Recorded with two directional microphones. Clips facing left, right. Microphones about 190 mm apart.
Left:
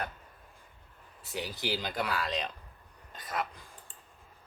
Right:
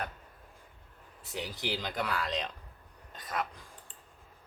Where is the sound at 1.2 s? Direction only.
5° left (ahead or behind).